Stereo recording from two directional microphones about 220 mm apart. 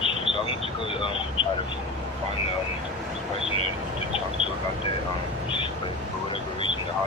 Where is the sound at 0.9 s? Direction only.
25° left (ahead or behind).